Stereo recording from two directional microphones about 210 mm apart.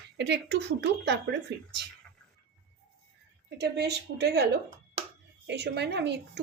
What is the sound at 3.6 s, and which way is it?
Speech, 50° right (ahead or behind).